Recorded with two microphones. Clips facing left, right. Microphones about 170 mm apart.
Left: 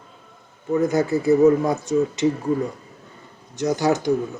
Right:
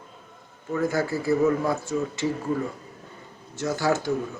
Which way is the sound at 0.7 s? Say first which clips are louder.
Left 6 dB; 20° left (ahead or behind).